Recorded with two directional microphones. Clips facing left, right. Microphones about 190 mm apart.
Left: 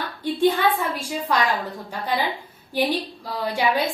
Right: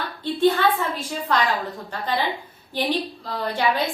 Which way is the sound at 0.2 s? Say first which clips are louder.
Even; 10° left (ahead or behind).